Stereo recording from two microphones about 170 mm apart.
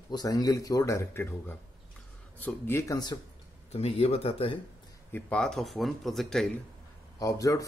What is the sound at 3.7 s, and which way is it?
Speech, 35° left (ahead or behind).